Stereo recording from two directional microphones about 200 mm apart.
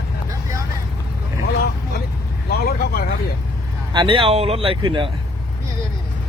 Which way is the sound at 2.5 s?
50° left (ahead or behind).